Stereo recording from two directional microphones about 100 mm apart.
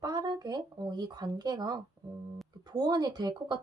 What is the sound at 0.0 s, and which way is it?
Speech, 40° right (ahead or behind).